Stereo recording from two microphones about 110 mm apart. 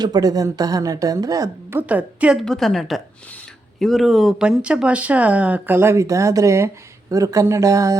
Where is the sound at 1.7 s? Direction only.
15° right (ahead or behind).